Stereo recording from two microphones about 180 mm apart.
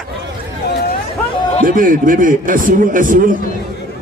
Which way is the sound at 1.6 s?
50° right (ahead or behind).